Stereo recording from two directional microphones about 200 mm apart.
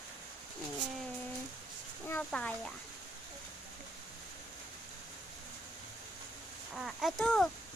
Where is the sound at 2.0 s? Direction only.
10° left (ahead or behind).